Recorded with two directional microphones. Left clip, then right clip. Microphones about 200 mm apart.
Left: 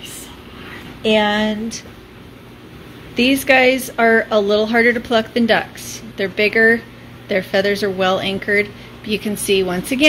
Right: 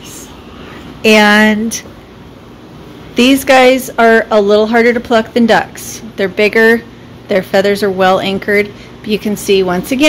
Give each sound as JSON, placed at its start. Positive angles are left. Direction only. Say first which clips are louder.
{"t": 1.0, "sound": "a woman's voice", "louder": "right 9 dB", "side_deg": -15}
{"t": 3.2, "sound": "a woman's voice", "louder": "right 6 dB", "side_deg": -15}